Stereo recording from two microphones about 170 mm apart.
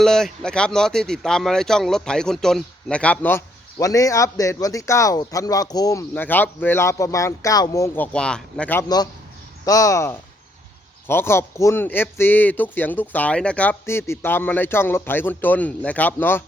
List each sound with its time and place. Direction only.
0.0 s speech: 5° left (ahead or behind)
8.8 s speech: 25° left (ahead or behind)